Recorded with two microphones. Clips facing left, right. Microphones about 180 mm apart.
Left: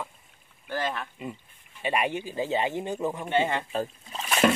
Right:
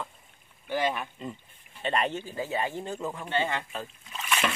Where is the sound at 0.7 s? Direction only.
15° right (ahead or behind).